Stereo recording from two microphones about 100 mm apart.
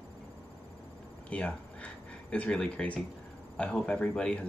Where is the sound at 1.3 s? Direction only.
10° left (ahead or behind).